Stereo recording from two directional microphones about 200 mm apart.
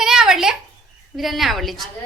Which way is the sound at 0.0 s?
Centre (ahead or behind).